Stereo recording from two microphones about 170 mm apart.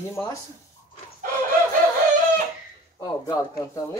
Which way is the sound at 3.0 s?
20° left (ahead or behind).